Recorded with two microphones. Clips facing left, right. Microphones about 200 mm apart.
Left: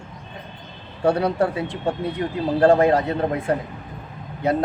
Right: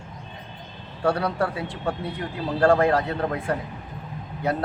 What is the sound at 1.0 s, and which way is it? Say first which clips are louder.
Speech: left 4 dB; 20° left (ahead or behind).